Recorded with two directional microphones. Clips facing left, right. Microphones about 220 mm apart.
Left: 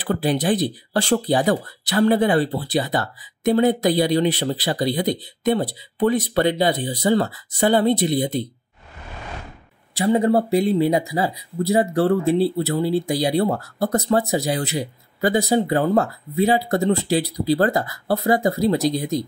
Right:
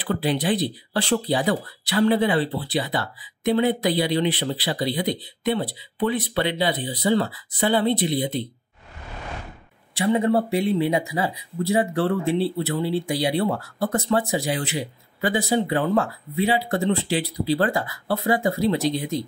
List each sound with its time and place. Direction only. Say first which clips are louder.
0.0 s speech: left 3 dB; 45° left (ahead or behind)
9.9 s speech: left 2 dB; 35° left (ahead or behind)